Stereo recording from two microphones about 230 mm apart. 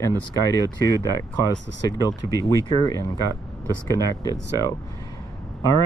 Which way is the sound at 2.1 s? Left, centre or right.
Centre.